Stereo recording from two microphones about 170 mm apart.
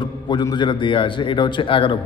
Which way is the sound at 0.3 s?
25° left (ahead or behind).